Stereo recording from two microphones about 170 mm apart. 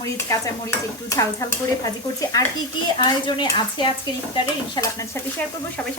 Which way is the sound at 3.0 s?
25° left (ahead or behind).